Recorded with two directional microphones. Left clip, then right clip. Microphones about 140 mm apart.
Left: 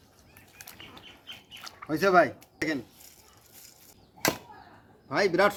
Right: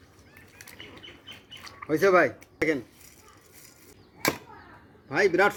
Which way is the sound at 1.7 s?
Centre (ahead or behind).